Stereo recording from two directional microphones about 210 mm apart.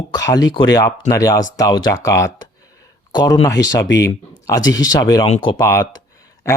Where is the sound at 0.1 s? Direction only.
15° left (ahead or behind).